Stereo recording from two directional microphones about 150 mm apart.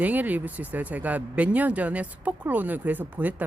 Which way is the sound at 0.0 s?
10° right (ahead or behind).